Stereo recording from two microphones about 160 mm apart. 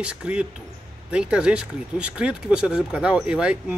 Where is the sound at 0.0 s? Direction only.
5° right (ahead or behind).